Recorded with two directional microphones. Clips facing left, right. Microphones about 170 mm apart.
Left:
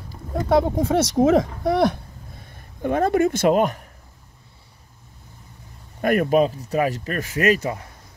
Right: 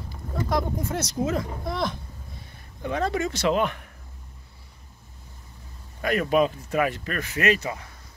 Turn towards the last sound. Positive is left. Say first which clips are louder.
# left 4 dB
turn(degrees=45)  # may be behind; listen again after turning